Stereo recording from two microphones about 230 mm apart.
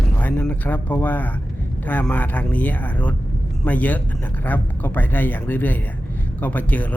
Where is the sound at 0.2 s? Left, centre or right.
Centre.